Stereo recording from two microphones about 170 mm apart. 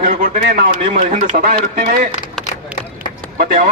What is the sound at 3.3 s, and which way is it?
Speech, 55° right (ahead or behind).